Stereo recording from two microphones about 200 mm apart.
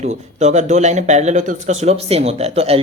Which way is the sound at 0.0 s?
35° right (ahead or behind).